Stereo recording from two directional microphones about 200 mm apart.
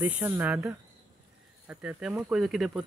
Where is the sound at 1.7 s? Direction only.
5° right (ahead or behind).